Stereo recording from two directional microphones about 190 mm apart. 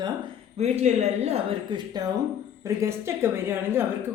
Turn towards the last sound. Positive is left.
turn(degrees=-10)  # may be behind; listen again after turning